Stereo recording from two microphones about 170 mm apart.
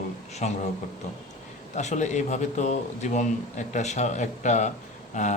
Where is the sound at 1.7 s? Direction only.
45° left (ahead or behind).